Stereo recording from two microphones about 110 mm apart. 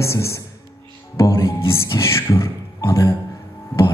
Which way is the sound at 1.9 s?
25° left (ahead or behind).